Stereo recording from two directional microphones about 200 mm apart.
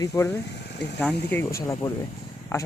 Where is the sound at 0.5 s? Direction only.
60° left (ahead or behind).